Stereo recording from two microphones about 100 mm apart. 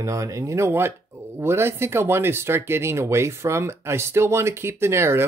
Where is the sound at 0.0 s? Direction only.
35° right (ahead or behind).